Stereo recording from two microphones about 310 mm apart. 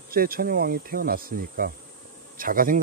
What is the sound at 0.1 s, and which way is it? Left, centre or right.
Speech, right.